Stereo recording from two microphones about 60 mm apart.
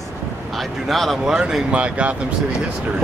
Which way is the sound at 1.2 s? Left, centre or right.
Centre.